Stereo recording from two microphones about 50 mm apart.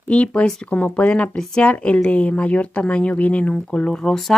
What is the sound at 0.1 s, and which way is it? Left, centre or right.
Speech, left.